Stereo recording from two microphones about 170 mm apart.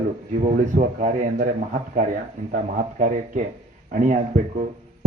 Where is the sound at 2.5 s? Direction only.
50° right (ahead or behind).